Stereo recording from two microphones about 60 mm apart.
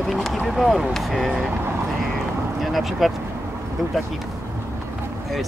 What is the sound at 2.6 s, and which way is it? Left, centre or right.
Speech, centre.